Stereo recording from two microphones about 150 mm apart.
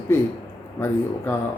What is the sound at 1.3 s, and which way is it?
Speech, 15° left (ahead or behind).